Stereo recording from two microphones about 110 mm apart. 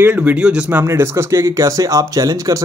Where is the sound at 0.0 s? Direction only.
15° right (ahead or behind).